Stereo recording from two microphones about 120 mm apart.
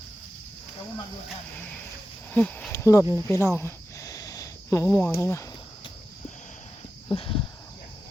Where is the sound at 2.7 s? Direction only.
25° left (ahead or behind).